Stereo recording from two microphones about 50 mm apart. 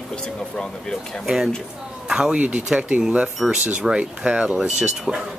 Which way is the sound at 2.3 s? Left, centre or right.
Right.